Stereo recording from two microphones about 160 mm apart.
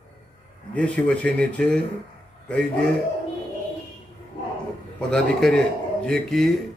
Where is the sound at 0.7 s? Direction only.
10° left (ahead or behind).